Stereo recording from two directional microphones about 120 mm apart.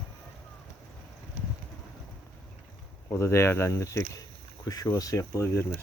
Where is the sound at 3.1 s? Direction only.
20° left (ahead or behind).